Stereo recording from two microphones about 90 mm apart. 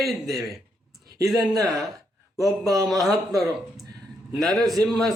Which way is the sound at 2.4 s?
40° right (ahead or behind).